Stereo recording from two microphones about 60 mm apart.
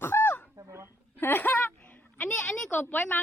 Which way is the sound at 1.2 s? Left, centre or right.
Left.